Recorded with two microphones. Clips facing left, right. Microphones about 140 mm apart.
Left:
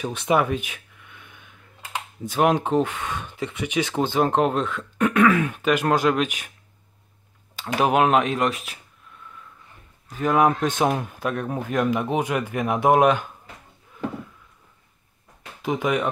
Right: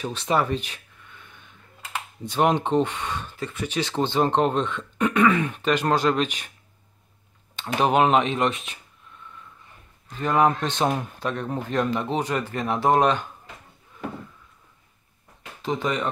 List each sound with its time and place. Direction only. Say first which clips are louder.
0.0 s a sound: left 2 dB; 10° left (ahead or behind)
3.3 s speech: left 2 dB; 20° left (ahead or behind)
7.5 s speech: even; 5° left (ahead or behind)
10.0 s speech: left 1 dB; 10° left (ahead or behind)
15.6 s speech: left 3 dB; 10° left (ahead or behind)